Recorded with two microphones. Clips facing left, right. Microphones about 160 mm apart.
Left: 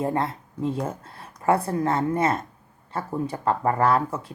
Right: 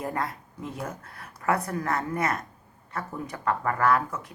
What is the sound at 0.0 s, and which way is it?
Speech, 25° left (ahead or behind).